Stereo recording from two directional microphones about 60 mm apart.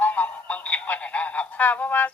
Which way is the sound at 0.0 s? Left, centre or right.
Left.